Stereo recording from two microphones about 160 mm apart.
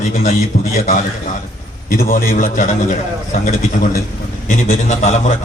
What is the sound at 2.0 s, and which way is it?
Speech, 65° left (ahead or behind).